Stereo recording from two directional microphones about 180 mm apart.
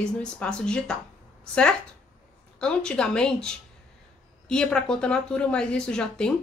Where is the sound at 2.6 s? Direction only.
5° left (ahead or behind).